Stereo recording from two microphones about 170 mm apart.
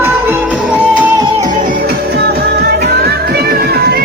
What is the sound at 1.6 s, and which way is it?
Music, 55° right (ahead or behind).